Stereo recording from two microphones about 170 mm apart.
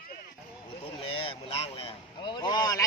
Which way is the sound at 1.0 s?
35° left (ahead or behind).